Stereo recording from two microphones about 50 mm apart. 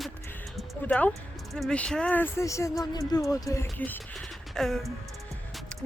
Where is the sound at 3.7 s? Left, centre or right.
Left.